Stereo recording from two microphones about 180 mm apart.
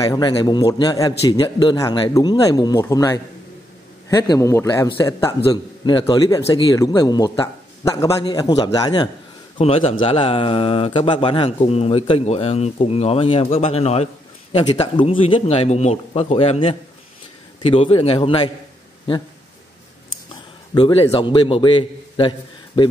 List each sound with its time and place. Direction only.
0.0 s a man's voice: 20° left (ahead or behind)
20.7 s a man's voice: 30° left (ahead or behind)